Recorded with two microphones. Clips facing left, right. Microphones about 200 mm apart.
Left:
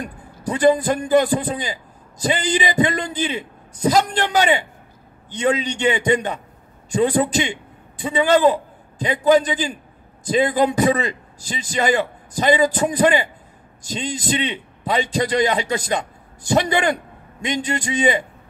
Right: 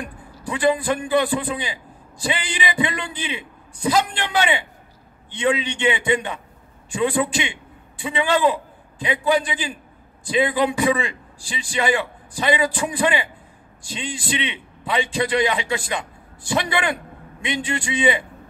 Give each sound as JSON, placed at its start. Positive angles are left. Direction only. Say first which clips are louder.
{"t": 0.0, "sound": "a man's voice", "louder": "left 4 dB", "side_deg": 40}